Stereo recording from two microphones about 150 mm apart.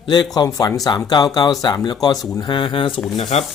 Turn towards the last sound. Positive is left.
turn(degrees=45)  # may be behind; listen again after turning